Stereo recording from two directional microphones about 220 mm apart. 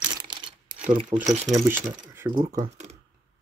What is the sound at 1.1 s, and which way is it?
Speech, 25° right (ahead or behind).